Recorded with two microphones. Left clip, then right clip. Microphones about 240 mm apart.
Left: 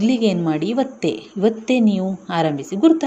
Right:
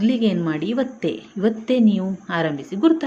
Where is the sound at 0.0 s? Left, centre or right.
Centre.